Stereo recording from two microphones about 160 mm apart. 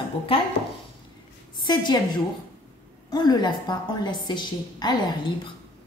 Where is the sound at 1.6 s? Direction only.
25° left (ahead or behind).